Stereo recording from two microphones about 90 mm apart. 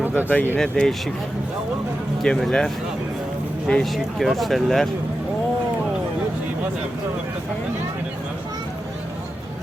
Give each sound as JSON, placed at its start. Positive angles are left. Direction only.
{"t": 0.0, "sound": "a sound", "side_deg": -20}
{"t": 0.6, "sound": "speech", "side_deg": 5}
{"t": 2.2, "sound": "speech", "side_deg": 5}